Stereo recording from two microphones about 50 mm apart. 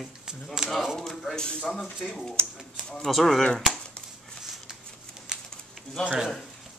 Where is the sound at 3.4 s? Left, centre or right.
Centre.